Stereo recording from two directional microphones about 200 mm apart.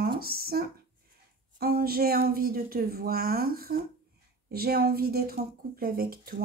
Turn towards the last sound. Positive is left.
turn(degrees=-50)  # may be behind; listen again after turning